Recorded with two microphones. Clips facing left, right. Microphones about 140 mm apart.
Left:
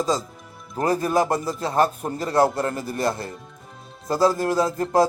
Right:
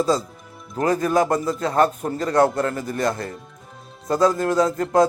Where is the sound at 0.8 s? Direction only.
30° left (ahead or behind).